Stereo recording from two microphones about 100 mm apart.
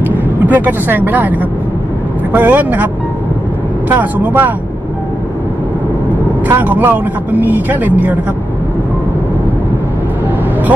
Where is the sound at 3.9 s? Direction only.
20° right (ahead or behind).